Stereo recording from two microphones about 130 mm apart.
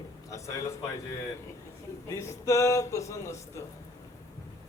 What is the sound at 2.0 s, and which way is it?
A man's voice, 25° left (ahead or behind).